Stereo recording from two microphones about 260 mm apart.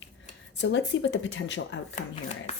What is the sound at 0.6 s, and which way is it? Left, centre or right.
Speech, left.